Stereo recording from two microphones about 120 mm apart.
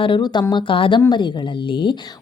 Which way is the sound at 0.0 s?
40° left (ahead or behind).